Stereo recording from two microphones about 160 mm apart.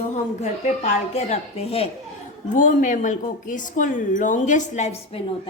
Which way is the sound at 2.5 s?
55° left (ahead or behind).